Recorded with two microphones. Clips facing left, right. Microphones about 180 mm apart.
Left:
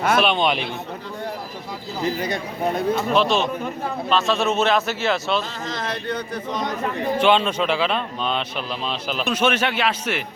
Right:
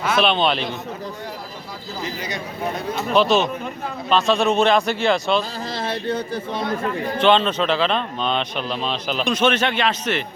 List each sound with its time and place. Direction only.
0.2 s speech: 10° left (ahead or behind)
2.0 s speech: 55° left (ahead or behind)
3.1 s a man's voice: centre (ahead or behind)
5.4 s speech: 30° right (ahead or behind)
7.2 s speech: 10° left (ahead or behind)